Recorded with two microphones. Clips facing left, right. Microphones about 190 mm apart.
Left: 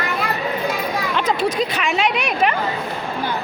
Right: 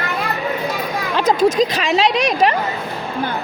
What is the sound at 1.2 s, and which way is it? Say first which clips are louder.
Speech: right 7 dB; 40° right (ahead or behind).